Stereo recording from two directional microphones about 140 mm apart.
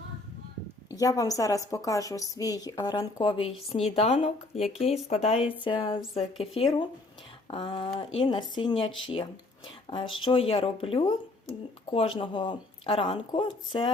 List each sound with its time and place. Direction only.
0.9 s a woman's voice: 25° left (ahead or behind)